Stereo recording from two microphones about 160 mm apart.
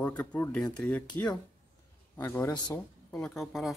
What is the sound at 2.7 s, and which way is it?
Speech, 5° left (ahead or behind).